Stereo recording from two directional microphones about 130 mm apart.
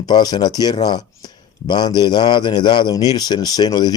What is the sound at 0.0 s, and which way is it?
Speech, 30° left (ahead or behind).